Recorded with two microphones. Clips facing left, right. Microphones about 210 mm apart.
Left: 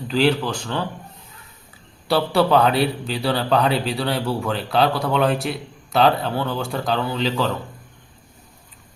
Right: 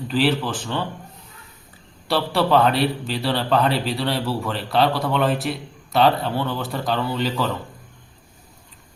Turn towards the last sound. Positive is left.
turn(degrees=0)  # may be behind; listen again after turning